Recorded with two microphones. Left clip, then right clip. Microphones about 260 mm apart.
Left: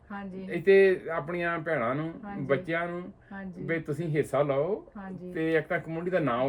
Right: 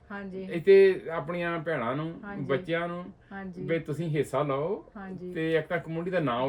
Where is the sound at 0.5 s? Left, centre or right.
Centre.